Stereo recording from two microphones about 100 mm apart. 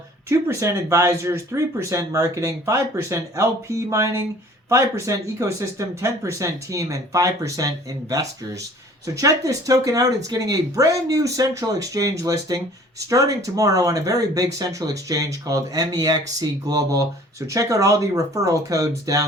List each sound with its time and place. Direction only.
0.3 s speech: 30° right (ahead or behind)
9.0 s speech: 35° right (ahead or behind)